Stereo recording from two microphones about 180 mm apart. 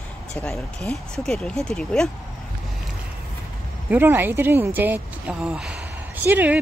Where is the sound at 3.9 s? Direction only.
10° right (ahead or behind).